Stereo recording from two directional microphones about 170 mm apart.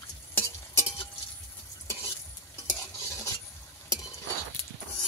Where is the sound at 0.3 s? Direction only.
10° left (ahead or behind).